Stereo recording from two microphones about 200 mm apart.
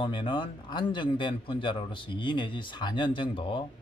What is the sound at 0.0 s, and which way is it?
Speech, 25° left (ahead or behind).